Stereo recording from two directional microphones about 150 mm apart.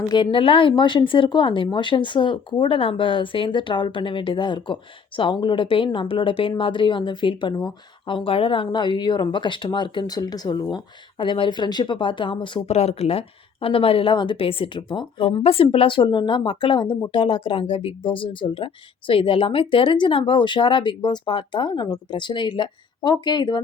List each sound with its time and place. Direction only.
0.1 s speech: 35° left (ahead or behind)
12.7 s speech: 45° left (ahead or behind); by 23.6 s 30° left (ahead or behind)